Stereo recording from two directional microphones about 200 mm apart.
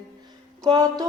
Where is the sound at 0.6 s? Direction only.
20° right (ahead or behind).